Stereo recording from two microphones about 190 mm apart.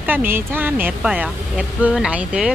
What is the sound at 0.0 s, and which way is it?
Speech, 10° right (ahead or behind).